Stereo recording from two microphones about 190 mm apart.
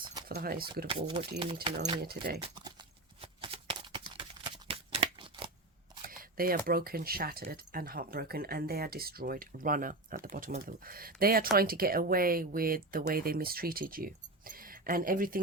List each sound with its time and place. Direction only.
0.0 s keys jangling: 25° right (ahead or behind)
0.3 s speech: 50° right (ahead or behind)
0.9 s speech: 25° right (ahead or behind)
3.2 s a sound: 30° right (ahead or behind)
6.1 s speech: 50° right (ahead or behind)